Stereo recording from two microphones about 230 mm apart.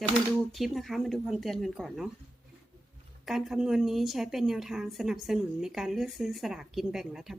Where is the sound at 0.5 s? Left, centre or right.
Centre.